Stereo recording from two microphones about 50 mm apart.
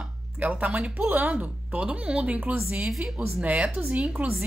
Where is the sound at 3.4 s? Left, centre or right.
Right.